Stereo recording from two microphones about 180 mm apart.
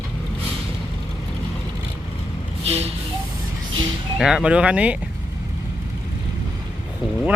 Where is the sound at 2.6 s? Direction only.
35° right (ahead or behind).